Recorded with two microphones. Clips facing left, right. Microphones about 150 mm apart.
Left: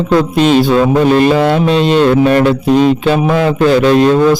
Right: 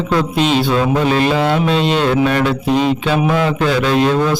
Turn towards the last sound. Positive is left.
turn(degrees=45)  # may be behind; listen again after turning